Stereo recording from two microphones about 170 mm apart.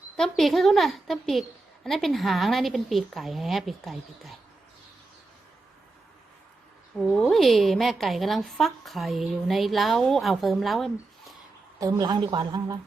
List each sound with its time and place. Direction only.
0.2 s a woman's voice: centre (ahead or behind)
7.2 s a woman's voice: centre (ahead or behind)
11.8 s speech: 20° right (ahead or behind)